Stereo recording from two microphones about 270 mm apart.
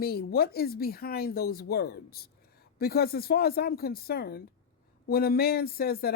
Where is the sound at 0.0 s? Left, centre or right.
Left.